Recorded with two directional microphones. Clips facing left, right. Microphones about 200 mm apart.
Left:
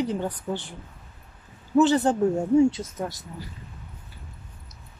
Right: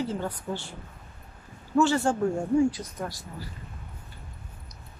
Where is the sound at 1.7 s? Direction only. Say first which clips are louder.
Left 4 dB; 20° left (ahead or behind).